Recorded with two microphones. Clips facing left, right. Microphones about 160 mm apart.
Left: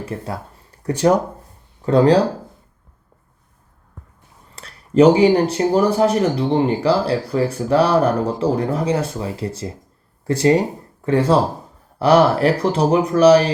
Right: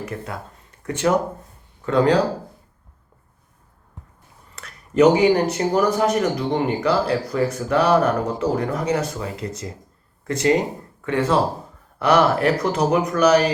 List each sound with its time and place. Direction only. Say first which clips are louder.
0.0 s speech: left 3 dB; 30° left (ahead or behind)
4.5 s speech: left 4 dB; 30° left (ahead or behind)